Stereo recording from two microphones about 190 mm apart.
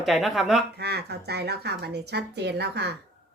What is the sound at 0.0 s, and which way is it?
Speech, centre (ahead or behind).